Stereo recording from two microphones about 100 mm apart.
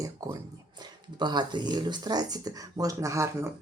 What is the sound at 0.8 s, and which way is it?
Speech, 45° right (ahead or behind).